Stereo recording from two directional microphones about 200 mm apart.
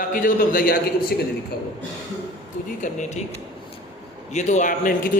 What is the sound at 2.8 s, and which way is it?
Speech, 40° left (ahead or behind).